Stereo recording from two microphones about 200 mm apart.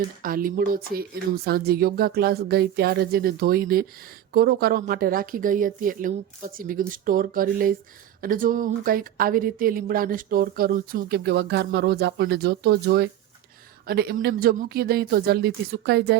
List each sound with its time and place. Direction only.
0.2 s speech: 45° right (ahead or behind)